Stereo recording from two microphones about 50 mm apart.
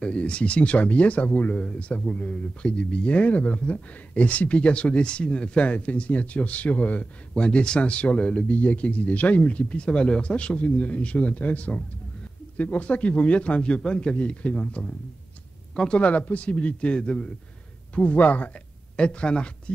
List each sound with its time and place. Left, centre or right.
0.0 s speech: left
7.3 s speech: centre
15.9 s speech: left
17.9 s a man's voice: left
18.9 s speech: left